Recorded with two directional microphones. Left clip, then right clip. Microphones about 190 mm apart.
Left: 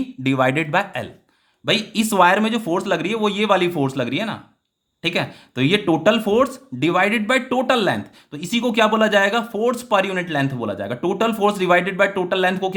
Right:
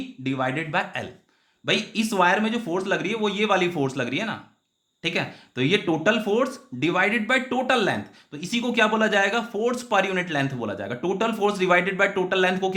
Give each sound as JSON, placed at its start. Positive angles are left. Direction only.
{"t": 0.2, "sound": "speech", "side_deg": 40}